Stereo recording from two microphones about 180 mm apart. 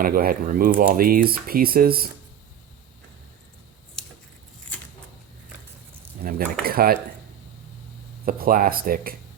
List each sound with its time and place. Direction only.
0.0 s speech: 55° right (ahead or behind)
6.2 s speech: 55° right (ahead or behind)
8.2 s speech: 55° right (ahead or behind)